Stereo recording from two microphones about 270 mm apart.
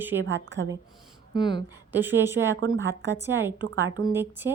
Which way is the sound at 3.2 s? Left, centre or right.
Centre.